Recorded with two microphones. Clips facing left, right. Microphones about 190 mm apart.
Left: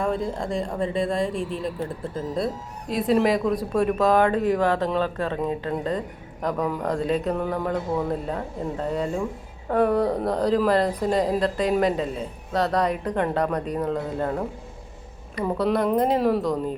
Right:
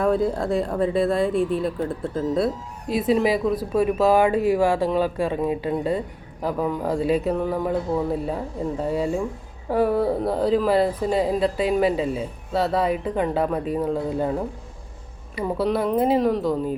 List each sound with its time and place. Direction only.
0.0 s speech: 5° right (ahead or behind)